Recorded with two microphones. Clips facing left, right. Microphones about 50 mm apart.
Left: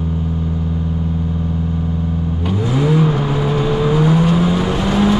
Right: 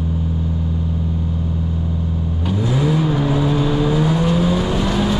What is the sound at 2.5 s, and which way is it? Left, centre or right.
Vehicle, centre.